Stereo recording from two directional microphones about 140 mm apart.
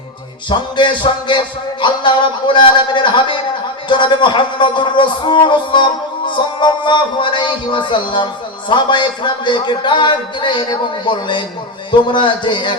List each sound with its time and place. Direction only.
0.5 s a man's voice: 35° left (ahead or behind)